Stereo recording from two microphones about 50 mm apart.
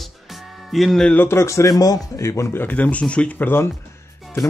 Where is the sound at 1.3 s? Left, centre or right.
Left.